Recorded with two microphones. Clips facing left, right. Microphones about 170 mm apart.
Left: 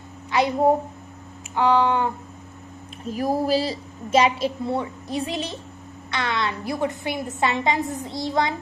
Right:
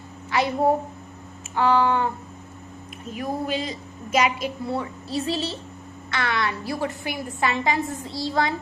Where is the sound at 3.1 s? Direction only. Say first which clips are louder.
Left 5 dB; 35° left (ahead or behind).